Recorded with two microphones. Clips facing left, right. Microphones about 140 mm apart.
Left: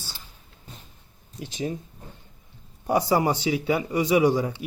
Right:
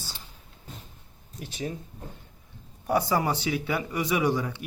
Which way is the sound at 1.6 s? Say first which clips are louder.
Left 4 dB; 20° left (ahead or behind).